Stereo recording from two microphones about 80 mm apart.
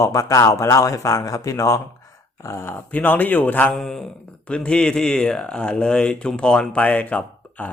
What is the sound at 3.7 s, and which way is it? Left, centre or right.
Speech, centre.